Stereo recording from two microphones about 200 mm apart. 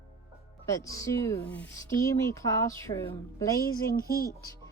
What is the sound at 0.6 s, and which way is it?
Speech, 15° left (ahead or behind).